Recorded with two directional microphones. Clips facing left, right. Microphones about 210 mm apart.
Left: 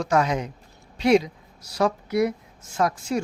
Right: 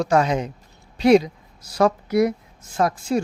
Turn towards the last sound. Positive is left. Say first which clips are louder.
# right 3 dB
turn(degrees=-30)  # may be behind; listen again after turning